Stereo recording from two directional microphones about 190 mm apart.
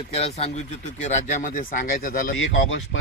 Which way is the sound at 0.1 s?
35° left (ahead or behind).